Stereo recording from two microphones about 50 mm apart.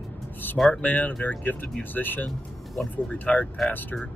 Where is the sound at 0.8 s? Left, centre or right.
Left.